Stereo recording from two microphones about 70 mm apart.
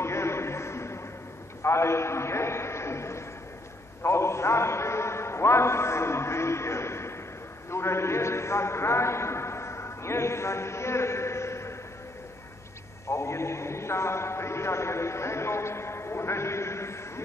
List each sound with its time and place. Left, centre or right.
0.0 s a sound: left
4.0 s a man's voice: left
13.1 s a man's voice: left